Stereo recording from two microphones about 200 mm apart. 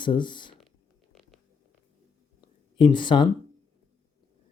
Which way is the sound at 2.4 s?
25° left (ahead or behind).